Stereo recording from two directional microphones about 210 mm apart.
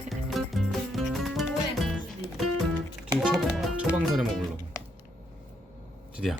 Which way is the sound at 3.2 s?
Centre (ahead or behind).